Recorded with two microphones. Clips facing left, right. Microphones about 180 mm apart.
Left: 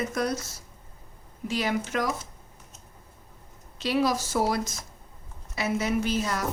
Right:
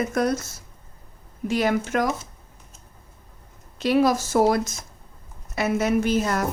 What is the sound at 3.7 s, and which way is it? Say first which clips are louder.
A woman's voice: right 6 dB; 50° right (ahead or behind).